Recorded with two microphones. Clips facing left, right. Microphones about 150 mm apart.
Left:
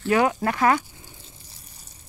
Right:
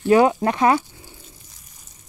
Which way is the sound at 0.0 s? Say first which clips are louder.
Right 5 dB; 25° right (ahead or behind).